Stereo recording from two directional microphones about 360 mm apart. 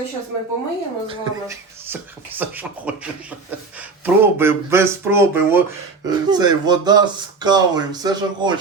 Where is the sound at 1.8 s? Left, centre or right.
Centre.